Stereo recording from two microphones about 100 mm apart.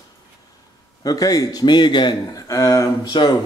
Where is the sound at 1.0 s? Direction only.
40° left (ahead or behind).